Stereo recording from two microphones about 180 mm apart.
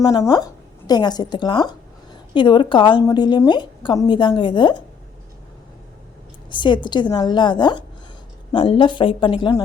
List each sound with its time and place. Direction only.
0.0 s a woman's voice: 20° left (ahead or behind)
6.5 s a woman's voice: 25° left (ahead or behind)